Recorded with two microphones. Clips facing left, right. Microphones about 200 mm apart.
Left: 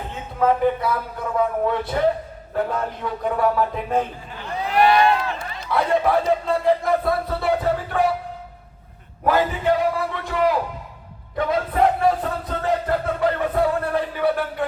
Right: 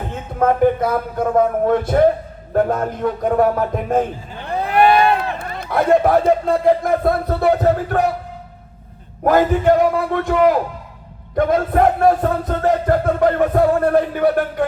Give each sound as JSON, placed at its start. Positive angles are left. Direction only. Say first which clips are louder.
{"t": 0.3, "sound": "music", "louder": "right 4 dB", "side_deg": -50}
{"t": 4.5, "sound": "speech", "louder": "right 3 dB", "side_deg": -55}
{"t": 9.2, "sound": "music", "louder": "right 6 dB", "side_deg": -50}